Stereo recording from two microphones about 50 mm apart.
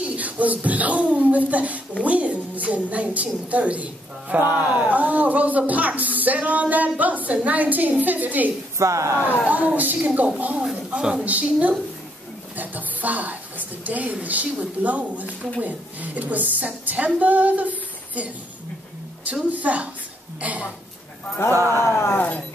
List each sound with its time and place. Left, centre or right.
0.0 s a woman's voice: right
8.7 s speech: right
9.2 s speech: left
9.8 s a woman's voice: right
11.0 s a woman's voice: centre
11.2 s a woman's voice: right
12.5 s a sound: right
13.8 s a woman's voice: right
21.5 s speech: right
21.8 s a sound: left